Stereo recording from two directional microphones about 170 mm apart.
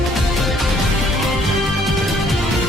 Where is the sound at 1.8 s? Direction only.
Centre (ahead or behind).